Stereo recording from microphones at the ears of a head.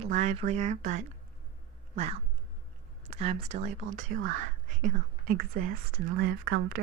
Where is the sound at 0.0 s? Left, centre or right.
Right.